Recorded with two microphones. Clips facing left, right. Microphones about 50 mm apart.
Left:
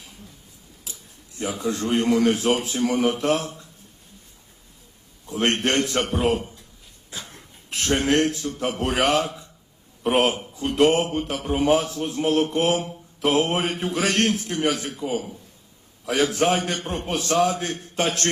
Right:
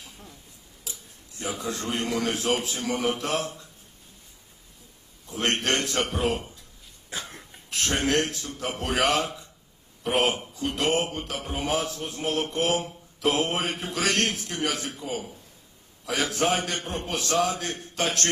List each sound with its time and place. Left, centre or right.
1.4 s a man's voice: left
5.3 s speech: left
7.1 s cough: right
7.7 s a man's voice: left